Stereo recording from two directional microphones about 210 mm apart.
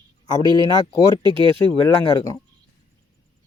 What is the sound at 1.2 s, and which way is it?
Speech, 20° right (ahead or behind).